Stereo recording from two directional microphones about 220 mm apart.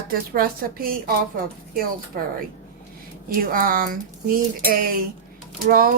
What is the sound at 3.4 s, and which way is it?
A woman's voice, 40° right (ahead or behind).